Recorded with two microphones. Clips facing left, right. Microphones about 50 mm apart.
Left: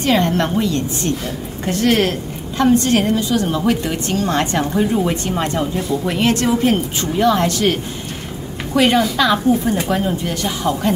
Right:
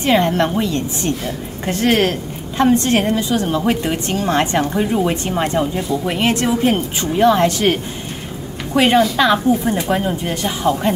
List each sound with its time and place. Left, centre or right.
0.0 s a woman's voice: centre